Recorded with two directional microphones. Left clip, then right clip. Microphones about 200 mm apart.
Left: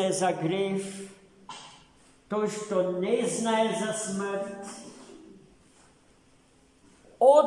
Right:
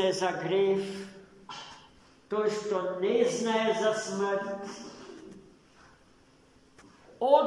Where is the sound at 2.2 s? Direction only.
65° left (ahead or behind).